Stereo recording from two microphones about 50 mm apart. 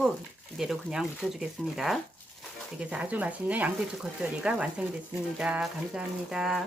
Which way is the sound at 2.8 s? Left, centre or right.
Right.